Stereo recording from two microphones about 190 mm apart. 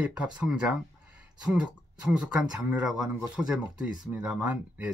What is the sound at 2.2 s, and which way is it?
Speech, 5° right (ahead or behind).